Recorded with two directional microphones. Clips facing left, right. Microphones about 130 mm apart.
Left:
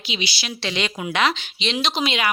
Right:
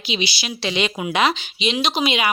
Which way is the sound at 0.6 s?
10° right (ahead or behind).